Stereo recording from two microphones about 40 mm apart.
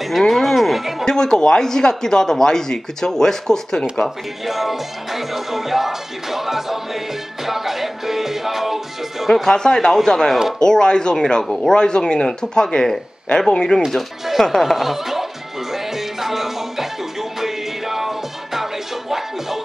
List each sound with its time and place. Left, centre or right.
0.3 s music: centre
1.0 s speech: centre
4.5 s music: centre
9.3 s speech: centre
11.4 s speech: centre
11.7 s speech: centre
13.8 s speech: centre
14.4 s speech: centre
14.8 s speech: centre
15.7 s music: centre